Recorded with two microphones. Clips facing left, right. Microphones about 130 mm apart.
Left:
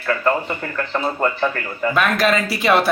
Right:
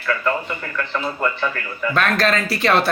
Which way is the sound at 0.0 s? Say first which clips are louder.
Left 3 dB; 40° left (ahead or behind).